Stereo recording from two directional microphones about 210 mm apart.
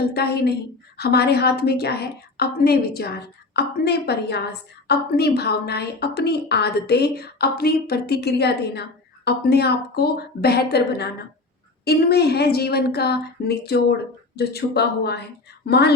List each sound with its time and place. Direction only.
0.1 s a woman's voice: 50° left (ahead or behind)